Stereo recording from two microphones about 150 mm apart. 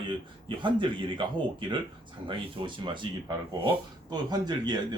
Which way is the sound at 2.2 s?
30° right (ahead or behind).